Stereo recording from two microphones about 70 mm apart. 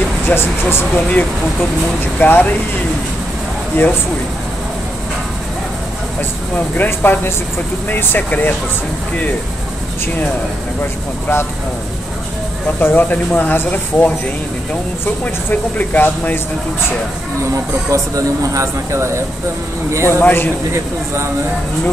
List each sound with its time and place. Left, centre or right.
0.3 s speech: left
2.1 s speech: left
3.8 s speech: left
6.5 s speech: left
12.8 s speech: left
17.9 s speech: right
20.1 s speech: left